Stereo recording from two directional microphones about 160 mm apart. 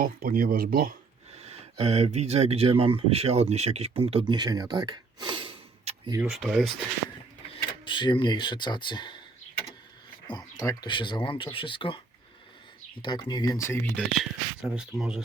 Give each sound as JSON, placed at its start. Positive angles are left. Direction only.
{"t": 0.0, "sound": "speech", "side_deg": -65}
{"t": 1.4, "sound": "speech", "side_deg": -40}
{"t": 6.2, "sound": "speech", "side_deg": 0}
{"t": 7.5, "sound": "speech", "side_deg": 30}
{"t": 10.2, "sound": "speech", "side_deg": 20}
{"t": 13.0, "sound": "speech", "side_deg": 30}
{"t": 14.1, "sound": "speech", "side_deg": 0}